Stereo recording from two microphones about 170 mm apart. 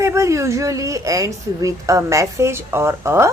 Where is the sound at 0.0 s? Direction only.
15° right (ahead or behind).